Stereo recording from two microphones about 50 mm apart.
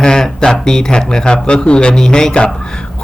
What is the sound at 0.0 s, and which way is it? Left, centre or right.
A man's voice, centre.